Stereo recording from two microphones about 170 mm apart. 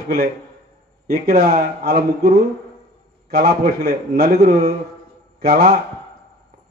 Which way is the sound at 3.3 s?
70° right (ahead or behind).